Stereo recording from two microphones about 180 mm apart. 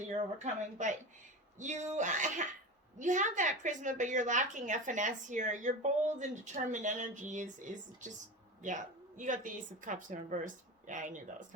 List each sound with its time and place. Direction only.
0.1 s a woman's voice: 40° right (ahead or behind)